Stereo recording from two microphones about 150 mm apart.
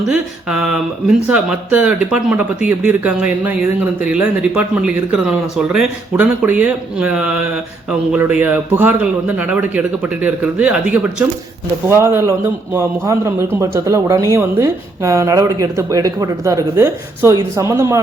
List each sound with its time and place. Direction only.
0.0 s a man's voice: 5° right (ahead or behind)